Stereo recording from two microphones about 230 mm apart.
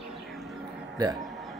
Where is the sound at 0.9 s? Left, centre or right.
Centre.